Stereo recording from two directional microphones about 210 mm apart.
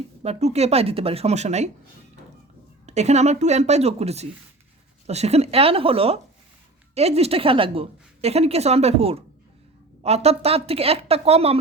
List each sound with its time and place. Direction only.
0.2 s a woman's voice: 30° right (ahead or behind)
2.8 s a woman's voice: 30° right (ahead or behind)